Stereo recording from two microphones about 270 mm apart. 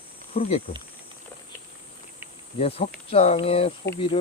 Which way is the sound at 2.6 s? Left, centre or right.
Left.